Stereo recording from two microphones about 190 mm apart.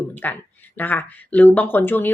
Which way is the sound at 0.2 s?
10° left (ahead or behind).